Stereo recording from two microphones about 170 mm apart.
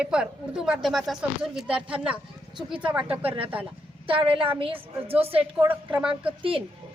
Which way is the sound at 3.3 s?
30° right (ahead or behind).